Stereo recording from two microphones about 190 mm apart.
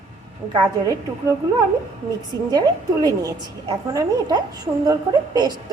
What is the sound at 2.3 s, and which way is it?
A woman's voice, 20° right (ahead or behind).